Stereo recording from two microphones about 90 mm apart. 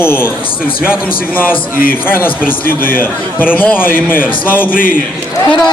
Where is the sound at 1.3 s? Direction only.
20° left (ahead or behind).